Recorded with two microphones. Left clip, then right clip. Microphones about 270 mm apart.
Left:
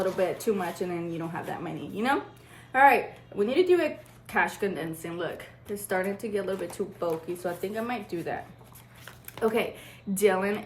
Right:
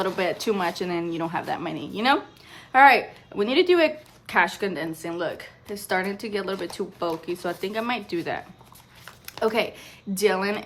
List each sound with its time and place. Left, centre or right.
0.4 s a woman's voice: centre
9.0 s a sound: centre
10.2 s a woman's voice: centre